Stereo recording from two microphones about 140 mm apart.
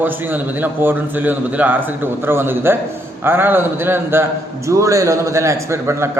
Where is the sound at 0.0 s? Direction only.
15° right (ahead or behind).